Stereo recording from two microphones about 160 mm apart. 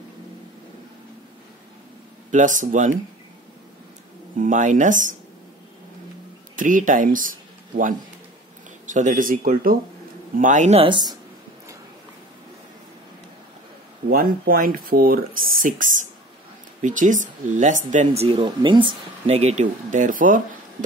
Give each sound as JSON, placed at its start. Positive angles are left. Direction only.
{"t": 2.3, "sound": "speech", "side_deg": -50}
{"t": 4.4, "sound": "speech", "side_deg": -50}
{"t": 6.5, "sound": "speech", "side_deg": -55}
{"t": 10.8, "sound": "speech", "side_deg": -30}
{"t": 14.0, "sound": "speech", "side_deg": -65}
{"t": 15.6, "sound": "speech", "side_deg": -55}